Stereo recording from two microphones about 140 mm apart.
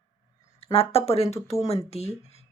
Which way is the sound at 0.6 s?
45° left (ahead or behind).